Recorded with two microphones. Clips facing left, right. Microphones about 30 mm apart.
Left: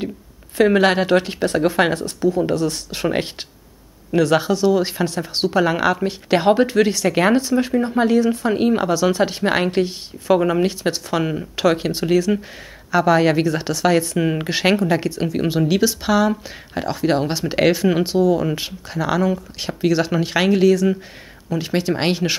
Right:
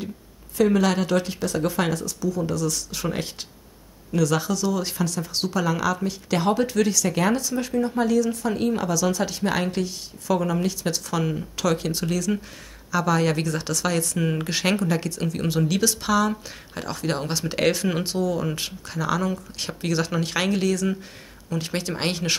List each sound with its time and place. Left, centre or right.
0.6 s speech: left; by 22.4 s centre